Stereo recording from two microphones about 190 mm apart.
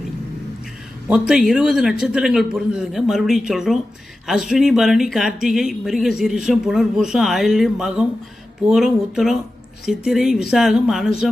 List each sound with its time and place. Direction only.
1.3 s speech: 5° right (ahead or behind)